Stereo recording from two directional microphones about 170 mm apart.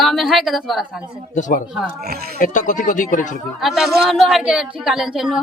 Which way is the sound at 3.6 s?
Centre (ahead or behind).